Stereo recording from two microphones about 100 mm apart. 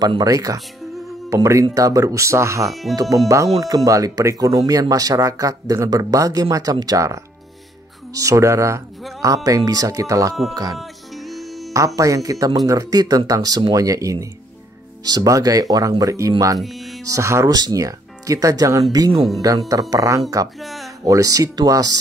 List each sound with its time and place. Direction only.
0.2 s speech: 35° right (ahead or behind)
2.7 s speech: centre (ahead or behind)
3.5 s speech: 40° right (ahead or behind)
10.8 s music: centre (ahead or behind)
11.7 s speech: 35° right (ahead or behind)
20.6 s a sound: centre (ahead or behind)
21.0 s speech: 35° right (ahead or behind)